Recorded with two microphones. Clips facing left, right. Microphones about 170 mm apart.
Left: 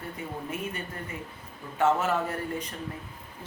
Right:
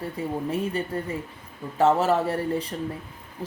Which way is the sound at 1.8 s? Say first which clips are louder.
Right 5 dB; 35° right (ahead or behind).